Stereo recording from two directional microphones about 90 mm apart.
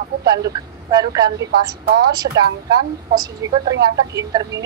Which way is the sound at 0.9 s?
45° right (ahead or behind).